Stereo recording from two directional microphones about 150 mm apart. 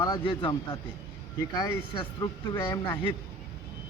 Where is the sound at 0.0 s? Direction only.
30° left (ahead or behind).